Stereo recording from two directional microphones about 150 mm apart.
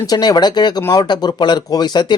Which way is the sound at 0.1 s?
25° left (ahead or behind).